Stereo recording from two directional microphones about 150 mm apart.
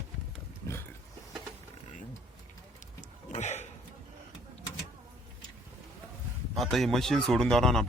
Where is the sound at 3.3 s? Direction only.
50° left (ahead or behind).